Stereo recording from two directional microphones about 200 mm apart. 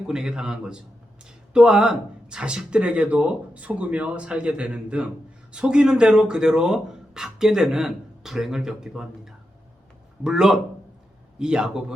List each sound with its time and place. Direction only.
0.1 s speech: 5° right (ahead or behind)